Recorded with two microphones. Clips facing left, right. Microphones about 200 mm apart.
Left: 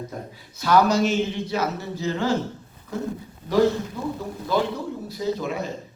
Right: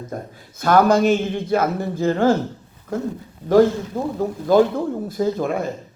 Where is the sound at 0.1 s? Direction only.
50° right (ahead or behind).